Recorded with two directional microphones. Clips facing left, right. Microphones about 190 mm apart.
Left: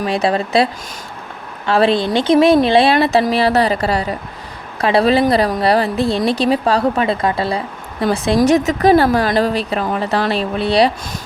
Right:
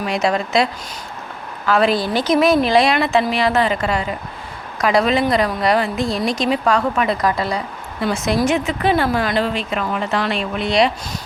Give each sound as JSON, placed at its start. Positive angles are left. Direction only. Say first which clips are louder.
{"t": 0.0, "sound": "a woman's voice", "louder": "left 2 dB", "side_deg": 30}